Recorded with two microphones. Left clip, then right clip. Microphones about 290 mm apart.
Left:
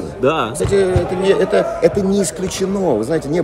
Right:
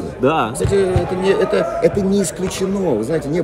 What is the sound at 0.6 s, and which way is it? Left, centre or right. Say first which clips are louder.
A man's voice: left 1 dB; centre.